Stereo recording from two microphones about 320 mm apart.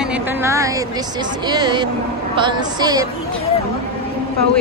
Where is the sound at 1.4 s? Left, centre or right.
Centre.